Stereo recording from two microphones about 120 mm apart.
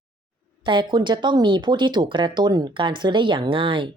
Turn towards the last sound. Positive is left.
turn(degrees=-45)  # may be behind; listen again after turning